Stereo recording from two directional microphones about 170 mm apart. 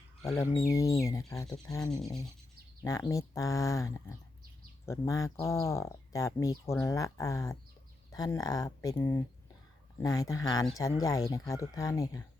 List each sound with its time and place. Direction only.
0.3 s speech: 15° left (ahead or behind)